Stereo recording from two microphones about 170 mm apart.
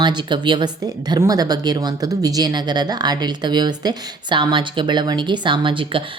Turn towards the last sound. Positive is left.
turn(degrees=-30)  # may be behind; listen again after turning